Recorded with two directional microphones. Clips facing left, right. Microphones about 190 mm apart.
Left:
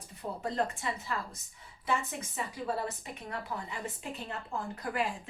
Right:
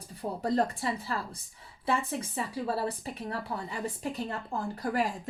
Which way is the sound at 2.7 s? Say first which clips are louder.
Right 3 dB; 35° right (ahead or behind).